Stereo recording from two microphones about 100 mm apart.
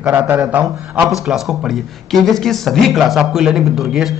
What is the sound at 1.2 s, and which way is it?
A man's voice, 5° right (ahead or behind).